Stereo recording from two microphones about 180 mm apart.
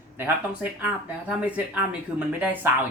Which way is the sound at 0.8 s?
5° right (ahead or behind).